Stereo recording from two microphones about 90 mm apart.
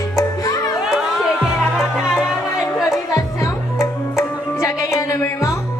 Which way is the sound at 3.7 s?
35° left (ahead or behind).